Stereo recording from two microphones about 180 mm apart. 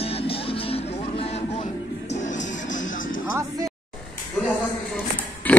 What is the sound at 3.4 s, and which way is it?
Music, 20° right (ahead or behind).